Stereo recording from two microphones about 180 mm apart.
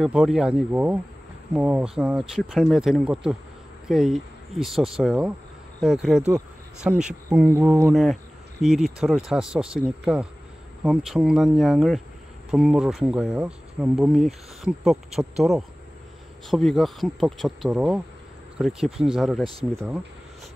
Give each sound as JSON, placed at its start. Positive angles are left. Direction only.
{"t": 0.0, "sound": "speech", "side_deg": -5}
{"t": 7.9, "sound": "speech", "side_deg": 0}